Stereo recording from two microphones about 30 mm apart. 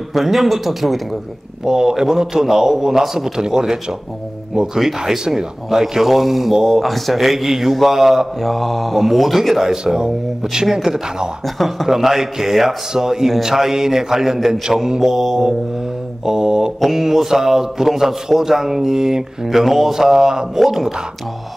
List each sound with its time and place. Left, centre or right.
0.1 s speech: centre
1.6 s a man's voice: centre
5.7 s a man's voice: centre
6.8 s a man's voice: centre
8.4 s speech: centre
11.4 s speech: centre
11.9 s a man's voice: centre
16.3 s speech: right
16.8 s a man's voice: centre
19.4 s a man's voice: centre
20.5 s a man's voice: centre